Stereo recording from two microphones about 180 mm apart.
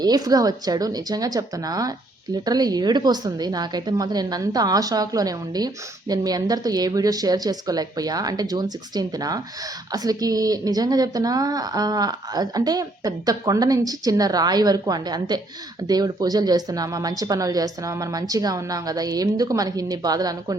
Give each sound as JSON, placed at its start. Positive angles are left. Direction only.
{"t": 0.0, "sound": "a woman's voice", "side_deg": -20}